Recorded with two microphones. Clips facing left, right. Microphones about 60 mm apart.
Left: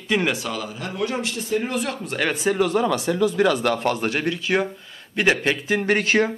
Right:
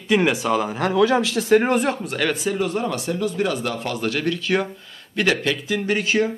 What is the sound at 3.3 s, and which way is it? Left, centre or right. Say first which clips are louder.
Speech: left 4 dB; left.